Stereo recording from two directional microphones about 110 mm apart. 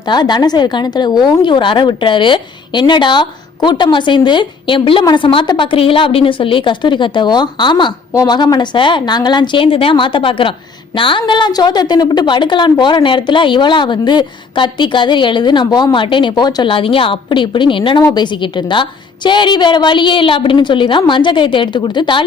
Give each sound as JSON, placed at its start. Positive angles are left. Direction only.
{"t": 0.0, "sound": "a woman's voice", "side_deg": 45}
{"t": 16.6, "sound": "a woman's voice", "side_deg": 55}